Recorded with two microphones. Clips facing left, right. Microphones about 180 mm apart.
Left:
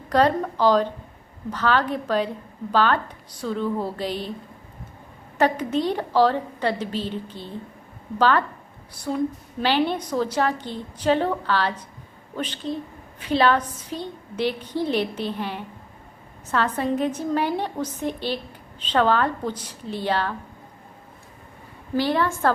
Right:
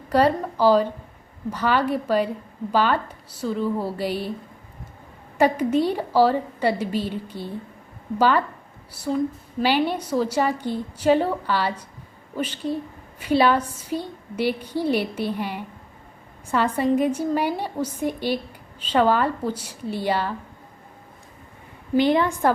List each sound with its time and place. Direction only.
0.1 s a woman's voice: 10° right (ahead or behind)
5.4 s a woman's voice: 10° right (ahead or behind)
21.9 s a woman's voice: 20° right (ahead or behind)